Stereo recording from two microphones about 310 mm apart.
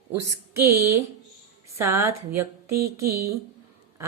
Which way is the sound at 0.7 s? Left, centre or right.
Right.